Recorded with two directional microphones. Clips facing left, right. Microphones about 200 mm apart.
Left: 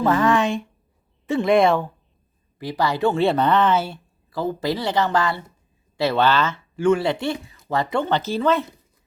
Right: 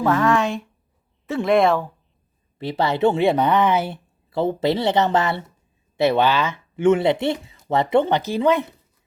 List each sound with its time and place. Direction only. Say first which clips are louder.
0.0 s speech: even; centre (ahead or behind)
2.6 s speech: right 2 dB; 25° right (ahead or behind)